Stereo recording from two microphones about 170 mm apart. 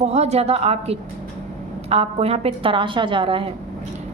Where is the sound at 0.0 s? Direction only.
40° right (ahead or behind).